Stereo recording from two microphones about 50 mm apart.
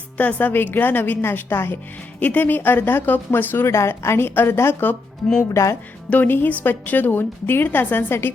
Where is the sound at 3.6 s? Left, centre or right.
Left.